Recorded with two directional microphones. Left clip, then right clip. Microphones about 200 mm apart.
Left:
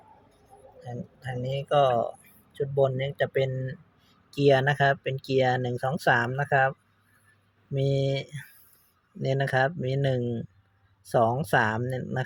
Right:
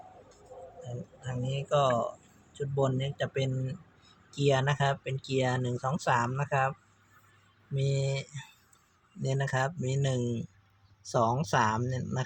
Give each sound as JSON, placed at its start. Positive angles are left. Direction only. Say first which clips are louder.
{"t": 1.2, "sound": "speech", "louder": "left 6 dB", "side_deg": 25}